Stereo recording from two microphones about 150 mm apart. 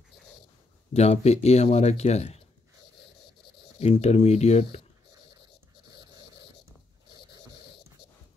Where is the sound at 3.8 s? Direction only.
45° left (ahead or behind).